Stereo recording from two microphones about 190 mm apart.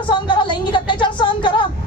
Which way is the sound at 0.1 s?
25° left (ahead or behind).